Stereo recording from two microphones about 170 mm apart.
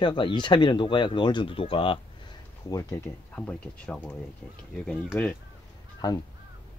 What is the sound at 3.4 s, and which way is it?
Speech, 5° left (ahead or behind).